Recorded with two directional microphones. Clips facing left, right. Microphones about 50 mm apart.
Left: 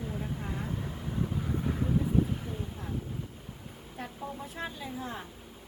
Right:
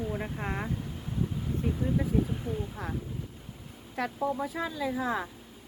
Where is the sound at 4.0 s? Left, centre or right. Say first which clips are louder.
Right 9 dB; right.